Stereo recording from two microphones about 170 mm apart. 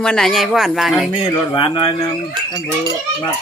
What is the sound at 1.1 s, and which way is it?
Speech, 25° left (ahead or behind).